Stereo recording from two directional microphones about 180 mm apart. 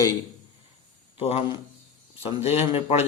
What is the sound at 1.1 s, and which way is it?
A man's voice, 30° left (ahead or behind).